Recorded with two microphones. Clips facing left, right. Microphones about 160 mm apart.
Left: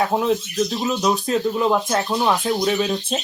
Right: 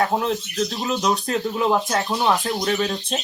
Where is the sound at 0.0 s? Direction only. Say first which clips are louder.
Left 2 dB; 5° left (ahead or behind).